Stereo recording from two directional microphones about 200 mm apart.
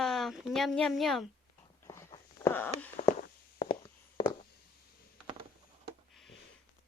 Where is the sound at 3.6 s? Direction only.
25° left (ahead or behind).